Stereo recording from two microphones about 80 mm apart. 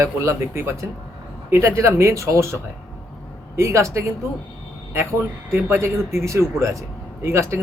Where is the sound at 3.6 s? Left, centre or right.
Right.